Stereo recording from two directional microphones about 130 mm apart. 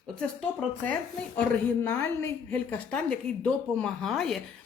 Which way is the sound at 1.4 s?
15° left (ahead or behind).